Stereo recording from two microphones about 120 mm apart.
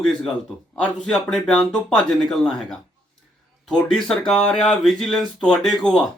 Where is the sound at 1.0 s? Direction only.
5° left (ahead or behind).